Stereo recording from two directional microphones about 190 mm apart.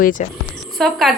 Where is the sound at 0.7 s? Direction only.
Centre (ahead or behind).